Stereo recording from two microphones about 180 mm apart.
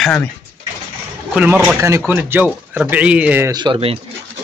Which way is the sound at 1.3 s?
5° right (ahead or behind).